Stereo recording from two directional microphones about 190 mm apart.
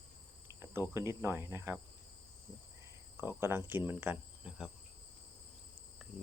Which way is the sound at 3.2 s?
10° right (ahead or behind).